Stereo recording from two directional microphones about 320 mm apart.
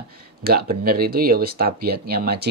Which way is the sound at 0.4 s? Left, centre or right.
Right.